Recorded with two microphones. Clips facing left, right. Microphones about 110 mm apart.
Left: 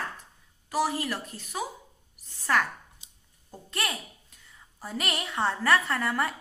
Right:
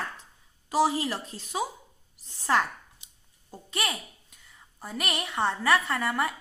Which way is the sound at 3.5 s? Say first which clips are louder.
Right 1 dB; 5° right (ahead or behind).